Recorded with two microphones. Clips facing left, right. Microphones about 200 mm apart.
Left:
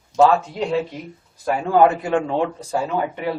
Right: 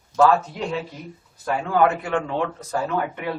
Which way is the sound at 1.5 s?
30° left (ahead or behind).